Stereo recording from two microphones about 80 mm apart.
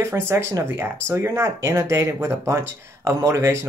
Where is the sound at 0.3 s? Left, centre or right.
Right.